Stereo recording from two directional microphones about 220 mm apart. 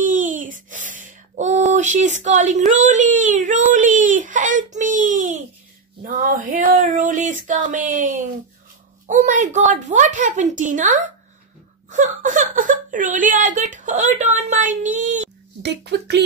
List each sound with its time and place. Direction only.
0.0 s a sound: 35° right (ahead or behind)
9.0 s a woman's voice: 35° right (ahead or behind)
15.6 s speech: 50° right (ahead or behind)